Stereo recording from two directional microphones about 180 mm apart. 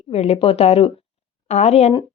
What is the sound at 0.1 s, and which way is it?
Speech, 35° left (ahead or behind).